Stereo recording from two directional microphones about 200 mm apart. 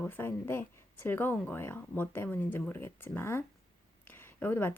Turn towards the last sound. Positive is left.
turn(degrees=10)  # may be behind; listen again after turning